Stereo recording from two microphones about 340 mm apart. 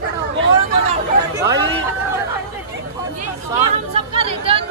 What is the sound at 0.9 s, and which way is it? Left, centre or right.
Chatter, centre.